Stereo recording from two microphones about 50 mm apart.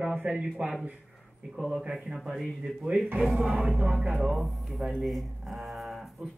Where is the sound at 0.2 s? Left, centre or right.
Right.